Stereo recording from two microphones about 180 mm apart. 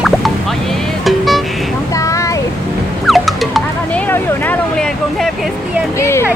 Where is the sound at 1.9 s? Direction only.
15° left (ahead or behind).